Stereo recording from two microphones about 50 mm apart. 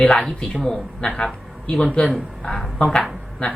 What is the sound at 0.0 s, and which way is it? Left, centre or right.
Speech, centre.